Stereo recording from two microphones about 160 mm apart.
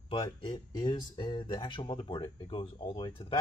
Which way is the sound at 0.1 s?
35° left (ahead or behind).